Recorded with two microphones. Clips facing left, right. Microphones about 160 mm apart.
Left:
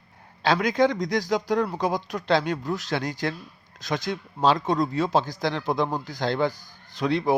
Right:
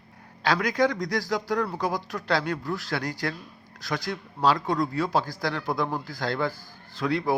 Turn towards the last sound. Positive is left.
turn(degrees=20)  # may be behind; listen again after turning